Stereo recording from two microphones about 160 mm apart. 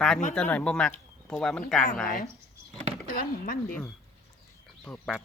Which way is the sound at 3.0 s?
65° left (ahead or behind).